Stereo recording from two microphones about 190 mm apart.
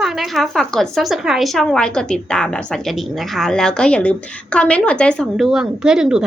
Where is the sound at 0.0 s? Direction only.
Centre (ahead or behind).